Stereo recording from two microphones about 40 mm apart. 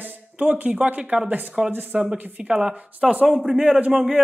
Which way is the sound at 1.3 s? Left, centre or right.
Right.